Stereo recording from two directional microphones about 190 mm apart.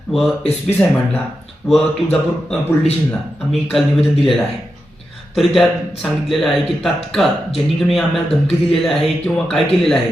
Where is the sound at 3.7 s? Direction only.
Centre (ahead or behind).